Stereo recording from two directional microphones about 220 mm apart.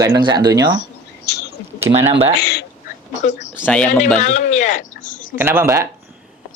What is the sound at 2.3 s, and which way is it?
Speech, 50° left (ahead or behind).